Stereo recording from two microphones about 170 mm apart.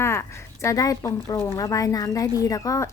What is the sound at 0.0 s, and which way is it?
A woman's voice, 15° left (ahead or behind).